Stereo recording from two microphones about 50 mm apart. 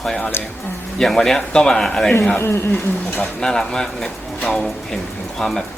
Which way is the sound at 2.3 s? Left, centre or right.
Left.